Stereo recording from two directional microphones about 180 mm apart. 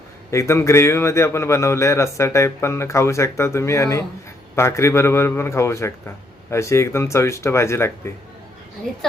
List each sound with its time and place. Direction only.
0.3 s a man's voice: 15° left (ahead or behind)